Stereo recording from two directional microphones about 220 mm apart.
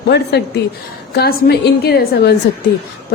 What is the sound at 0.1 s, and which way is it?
A woman's voice, 50° left (ahead or behind).